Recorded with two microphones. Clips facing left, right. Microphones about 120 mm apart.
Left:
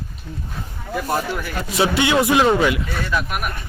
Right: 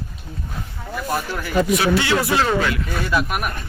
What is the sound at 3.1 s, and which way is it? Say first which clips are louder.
Speech: right 3 dB; 5° right (ahead or behind).